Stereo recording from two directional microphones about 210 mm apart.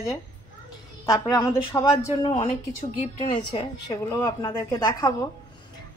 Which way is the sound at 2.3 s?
35° left (ahead or behind).